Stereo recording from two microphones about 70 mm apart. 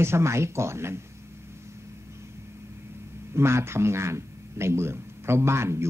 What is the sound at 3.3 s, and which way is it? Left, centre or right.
A man's voice, right.